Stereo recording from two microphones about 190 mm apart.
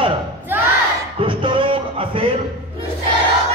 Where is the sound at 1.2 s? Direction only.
25° right (ahead or behind).